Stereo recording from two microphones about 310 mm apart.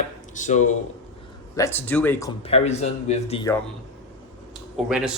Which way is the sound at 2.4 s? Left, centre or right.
Centre.